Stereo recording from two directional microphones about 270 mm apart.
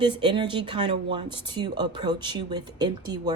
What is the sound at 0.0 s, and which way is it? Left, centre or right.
Speech, centre.